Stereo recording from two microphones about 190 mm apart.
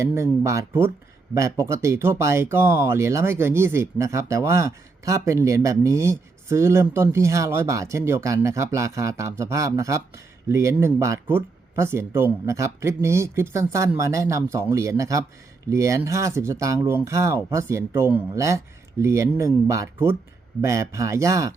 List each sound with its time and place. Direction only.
0.0 s speech: 15° right (ahead or behind)